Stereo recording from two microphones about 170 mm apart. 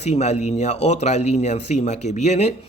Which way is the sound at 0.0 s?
40° left (ahead or behind).